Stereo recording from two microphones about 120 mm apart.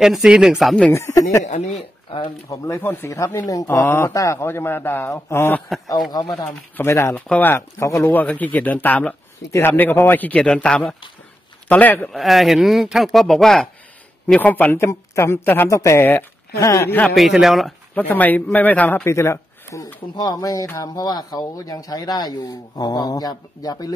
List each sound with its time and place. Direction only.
0.0 s speech: 5° right (ahead or behind)
0.9 s speech: 20° left (ahead or behind)
1.4 s speech: 75° left (ahead or behind)
2.5 s speech: 25° left (ahead or behind)
6.8 s speech: 20° left (ahead or behind)
8.1 s speech: 15° left (ahead or behind)
12.1 s speech: centre (ahead or behind)
14.2 s speech: 15° left (ahead or behind)
17.1 s speech: centre (ahead or behind)
17.9 s speech: 15° left (ahead or behind)
19.0 s speech: 25° left (ahead or behind)